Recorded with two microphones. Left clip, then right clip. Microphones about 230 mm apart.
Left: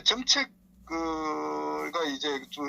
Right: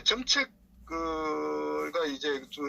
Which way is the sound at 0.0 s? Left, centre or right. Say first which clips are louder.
Left 2 dB; left.